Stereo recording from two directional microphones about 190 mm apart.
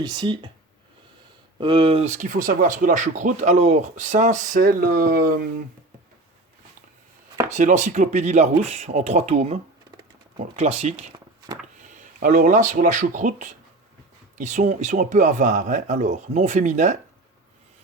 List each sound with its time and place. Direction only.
0.0 s speech: 20° right (ahead or behind)
1.5 s speech: 25° right (ahead or behind); by 5.6 s 45° right (ahead or behind)
7.5 s speech: 40° right (ahead or behind)